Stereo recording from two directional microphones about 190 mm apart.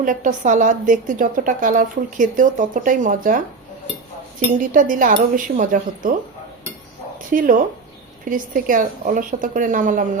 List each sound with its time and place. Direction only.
0.0 s a woman's voice: 45° right (ahead or behind)
4.5 s a woman's voice: 45° right (ahead or behind)
7.3 s a woman's voice: 45° right (ahead or behind)